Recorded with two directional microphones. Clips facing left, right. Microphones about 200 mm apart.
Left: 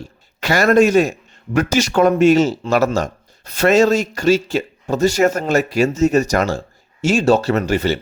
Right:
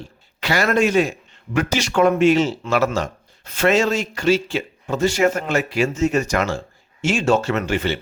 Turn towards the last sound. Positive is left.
turn(degrees=40)  # may be behind; listen again after turning